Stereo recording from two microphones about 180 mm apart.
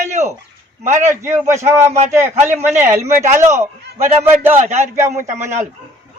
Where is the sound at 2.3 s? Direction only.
35° right (ahead or behind).